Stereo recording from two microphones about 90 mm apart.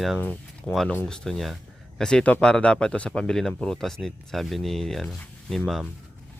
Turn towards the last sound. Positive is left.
turn(degrees=5)  # may be behind; listen again after turning